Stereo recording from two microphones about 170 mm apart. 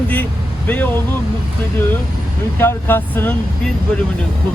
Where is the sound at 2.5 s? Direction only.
15° left (ahead or behind).